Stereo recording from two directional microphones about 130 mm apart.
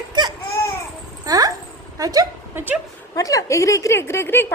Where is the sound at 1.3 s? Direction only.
30° right (ahead or behind).